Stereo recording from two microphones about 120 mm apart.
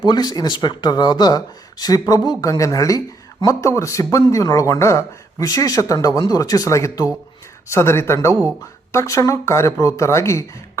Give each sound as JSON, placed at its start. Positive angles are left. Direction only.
{"t": 0.0, "sound": "speech", "side_deg": 35}